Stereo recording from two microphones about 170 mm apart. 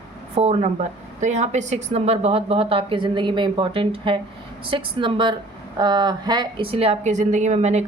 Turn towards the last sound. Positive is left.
turn(degrees=-40)  # may be behind; listen again after turning